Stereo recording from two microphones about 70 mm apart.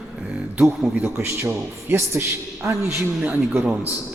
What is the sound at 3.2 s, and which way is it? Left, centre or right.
Speech, right.